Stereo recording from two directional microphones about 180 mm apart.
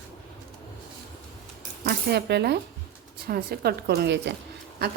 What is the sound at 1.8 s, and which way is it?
Speech, 65° right (ahead or behind).